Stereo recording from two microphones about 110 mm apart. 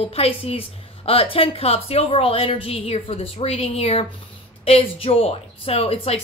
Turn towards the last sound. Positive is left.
turn(degrees=60)  # may be behind; listen again after turning